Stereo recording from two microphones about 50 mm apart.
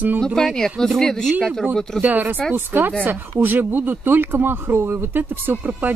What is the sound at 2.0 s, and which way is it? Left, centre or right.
Speech, right.